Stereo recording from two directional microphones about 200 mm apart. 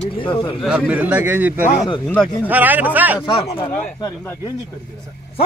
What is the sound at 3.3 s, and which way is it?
Speech, 25° left (ahead or behind).